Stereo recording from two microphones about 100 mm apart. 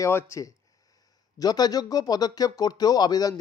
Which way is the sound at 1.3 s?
40° left (ahead or behind).